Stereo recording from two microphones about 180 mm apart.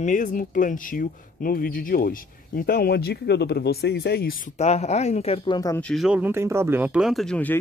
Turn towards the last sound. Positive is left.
turn(degrees=5)  # may be behind; listen again after turning